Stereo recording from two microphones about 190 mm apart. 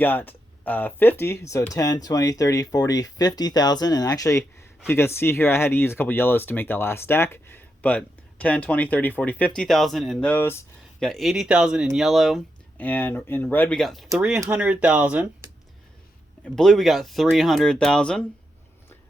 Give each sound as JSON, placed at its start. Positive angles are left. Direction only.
{"t": 0.0, "sound": "speech", "side_deg": 10}
{"t": 11.1, "sound": "speech", "side_deg": 0}
{"t": 16.6, "sound": "speech", "side_deg": 0}